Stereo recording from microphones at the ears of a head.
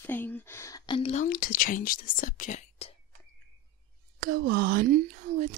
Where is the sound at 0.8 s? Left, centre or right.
Left.